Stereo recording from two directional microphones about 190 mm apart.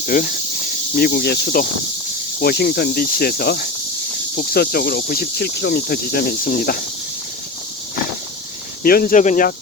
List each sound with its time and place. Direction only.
0.0 s speech: 45° left (ahead or behind)
8.8 s speech: 50° left (ahead or behind)